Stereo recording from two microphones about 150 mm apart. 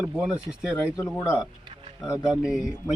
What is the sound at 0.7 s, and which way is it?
Speech, 15° left (ahead or behind).